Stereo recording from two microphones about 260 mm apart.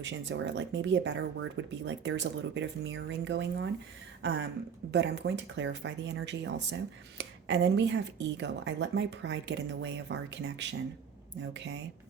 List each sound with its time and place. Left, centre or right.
0.0 s speech: right
4.9 s speech: right